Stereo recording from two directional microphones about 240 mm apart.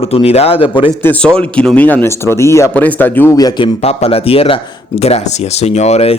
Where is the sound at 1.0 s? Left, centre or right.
Centre.